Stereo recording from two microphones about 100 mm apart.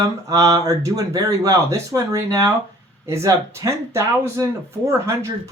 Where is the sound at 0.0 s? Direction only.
35° right (ahead or behind).